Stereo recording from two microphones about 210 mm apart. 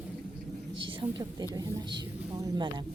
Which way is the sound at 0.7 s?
25° right (ahead or behind).